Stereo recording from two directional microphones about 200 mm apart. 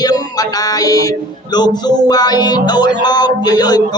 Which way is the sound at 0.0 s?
20° left (ahead or behind).